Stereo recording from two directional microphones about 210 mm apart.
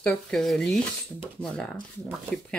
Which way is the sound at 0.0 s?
5° left (ahead or behind).